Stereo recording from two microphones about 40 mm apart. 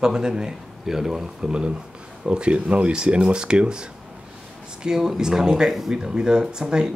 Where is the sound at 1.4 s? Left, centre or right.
Right.